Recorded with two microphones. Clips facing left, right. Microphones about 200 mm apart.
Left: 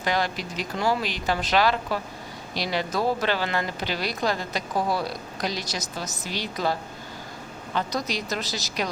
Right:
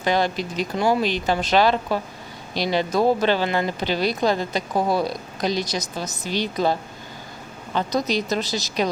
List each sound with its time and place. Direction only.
0.0 s speech: 25° right (ahead or behind)
7.9 s speech: 20° right (ahead or behind)